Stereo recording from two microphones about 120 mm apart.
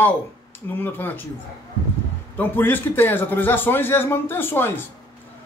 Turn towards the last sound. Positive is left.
turn(degrees=20)  # may be behind; listen again after turning